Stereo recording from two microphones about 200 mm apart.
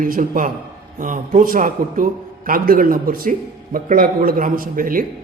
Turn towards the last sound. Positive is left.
turn(degrees=-45)  # may be behind; listen again after turning